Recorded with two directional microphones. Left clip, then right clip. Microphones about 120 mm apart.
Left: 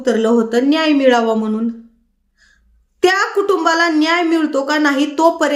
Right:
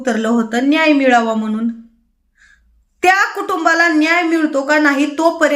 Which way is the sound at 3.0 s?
20° left (ahead or behind).